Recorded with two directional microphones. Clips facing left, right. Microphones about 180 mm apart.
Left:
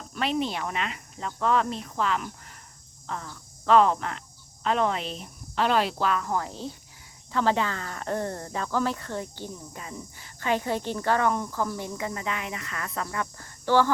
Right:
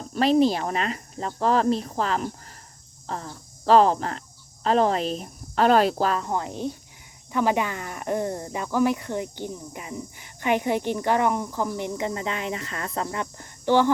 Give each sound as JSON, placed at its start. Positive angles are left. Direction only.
{"t": 0.1, "sound": "a woman's voice", "side_deg": -35}
{"t": 6.2, "sound": "speech", "side_deg": -20}